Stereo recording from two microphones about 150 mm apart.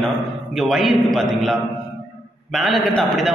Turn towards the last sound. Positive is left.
turn(degrees=0)  # may be behind; listen again after turning